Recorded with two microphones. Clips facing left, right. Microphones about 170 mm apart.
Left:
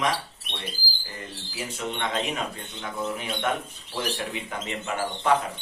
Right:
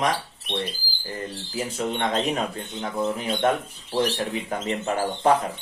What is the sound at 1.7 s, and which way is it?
Speech, 35° right (ahead or behind).